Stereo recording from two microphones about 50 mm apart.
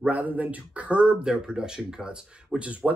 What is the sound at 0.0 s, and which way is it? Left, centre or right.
Speech, right.